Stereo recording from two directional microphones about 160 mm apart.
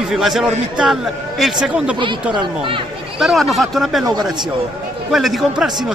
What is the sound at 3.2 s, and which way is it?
Speech, centre (ahead or behind).